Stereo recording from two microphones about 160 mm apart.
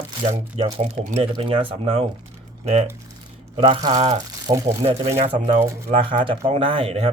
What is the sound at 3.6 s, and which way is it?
Speech, 30° right (ahead or behind).